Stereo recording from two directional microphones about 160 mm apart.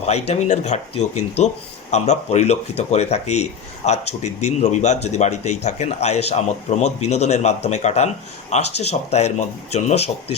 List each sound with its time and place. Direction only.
0.0 s speech: 45° left (ahead or behind)